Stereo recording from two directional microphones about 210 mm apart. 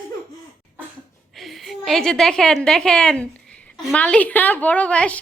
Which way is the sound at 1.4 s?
Centre (ahead or behind).